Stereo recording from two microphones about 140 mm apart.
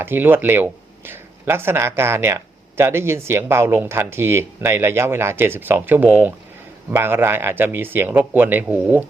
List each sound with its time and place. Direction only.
0.0 s speech: 15° right (ahead or behind)